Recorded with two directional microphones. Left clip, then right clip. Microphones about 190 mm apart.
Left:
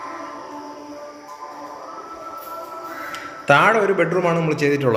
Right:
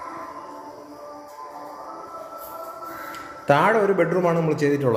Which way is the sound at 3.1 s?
20° right (ahead or behind).